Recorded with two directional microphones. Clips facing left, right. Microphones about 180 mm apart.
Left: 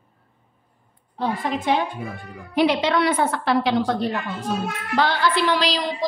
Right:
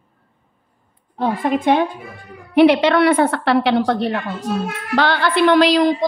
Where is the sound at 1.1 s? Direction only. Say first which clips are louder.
Right 6 dB; 55° right (ahead or behind).